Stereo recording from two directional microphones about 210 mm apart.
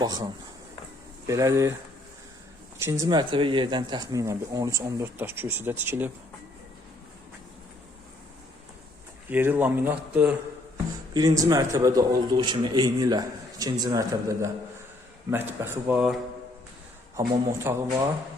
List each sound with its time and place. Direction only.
0.0 s a man's voice: 20° right (ahead or behind)
1.3 s speech: 15° right (ahead or behind)
2.7 s speech: 15° right (ahead or behind)
9.3 s speech: 10° right (ahead or behind)
11.1 s a man's voice: 20° right (ahead or behind)